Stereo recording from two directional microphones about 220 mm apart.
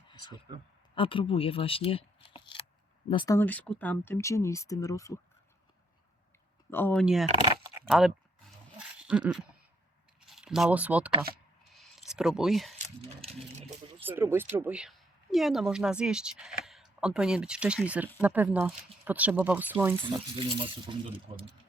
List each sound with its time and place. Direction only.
0.9 s speech: 25° left (ahead or behind)
6.7 s speech: 10° left (ahead or behind)
7.0 s speech: centre (ahead or behind)
7.9 s a sound: centre (ahead or behind)
9.0 s dog: 5° right (ahead or behind)
10.2 s speech: centre (ahead or behind)
11.7 s a sound: centre (ahead or behind)
14.0 s speech: 10° right (ahead or behind)
20.3 s speech: 25° right (ahead or behind)